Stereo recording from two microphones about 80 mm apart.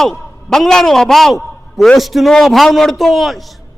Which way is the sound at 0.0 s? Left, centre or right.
Centre.